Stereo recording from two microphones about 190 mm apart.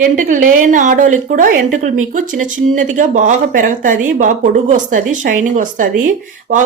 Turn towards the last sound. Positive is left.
turn(degrees=-45)  # may be behind; listen again after turning